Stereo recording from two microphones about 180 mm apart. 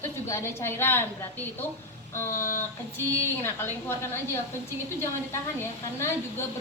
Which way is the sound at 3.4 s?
15° left (ahead or behind).